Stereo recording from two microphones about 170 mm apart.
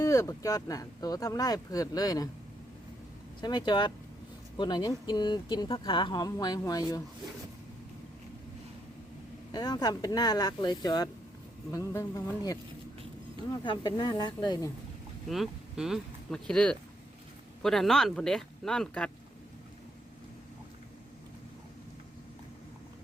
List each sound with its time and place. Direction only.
0.0 s speech: 20° left (ahead or behind)
3.4 s speech: 25° left (ahead or behind)
9.5 s speech: 25° left (ahead or behind)
15.3 s speech: centre (ahead or behind)